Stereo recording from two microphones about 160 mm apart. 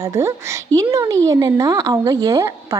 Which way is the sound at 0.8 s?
20° right (ahead or behind).